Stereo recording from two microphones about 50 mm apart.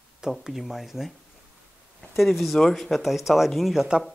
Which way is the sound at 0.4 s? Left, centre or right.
Centre.